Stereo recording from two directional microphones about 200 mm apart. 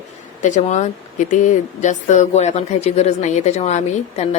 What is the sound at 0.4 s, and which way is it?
A woman's voice, 35° left (ahead or behind).